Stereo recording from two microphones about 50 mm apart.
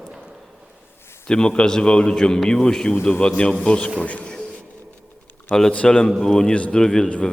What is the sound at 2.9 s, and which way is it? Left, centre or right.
Speech, left.